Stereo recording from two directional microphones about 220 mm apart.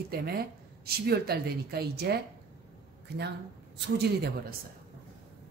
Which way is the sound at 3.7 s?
45° right (ahead or behind).